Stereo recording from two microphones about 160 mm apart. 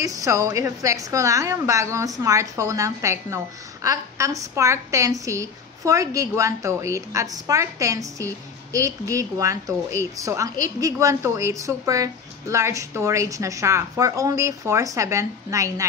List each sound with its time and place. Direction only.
0.0 s a woman's voice: 20° right (ahead or behind)